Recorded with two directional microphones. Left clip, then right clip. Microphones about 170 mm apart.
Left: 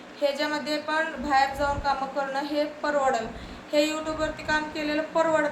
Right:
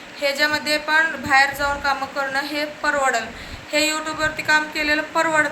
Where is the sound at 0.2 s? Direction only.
10° left (ahead or behind).